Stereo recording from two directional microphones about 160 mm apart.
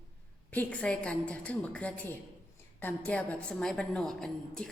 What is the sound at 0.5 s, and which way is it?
A woman's voice, 10° left (ahead or behind).